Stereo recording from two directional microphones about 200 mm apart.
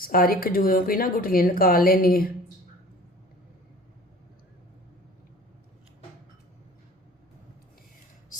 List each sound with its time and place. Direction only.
0.0 s speech: 45° left (ahead or behind)